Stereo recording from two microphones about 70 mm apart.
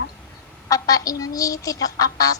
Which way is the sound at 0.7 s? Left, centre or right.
Left.